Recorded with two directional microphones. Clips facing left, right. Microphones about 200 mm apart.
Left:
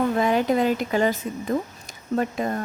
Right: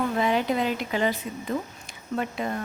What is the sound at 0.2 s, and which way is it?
A woman's voice, 45° left (ahead or behind).